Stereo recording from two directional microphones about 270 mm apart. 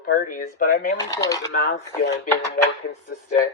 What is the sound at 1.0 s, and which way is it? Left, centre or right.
Speech, centre.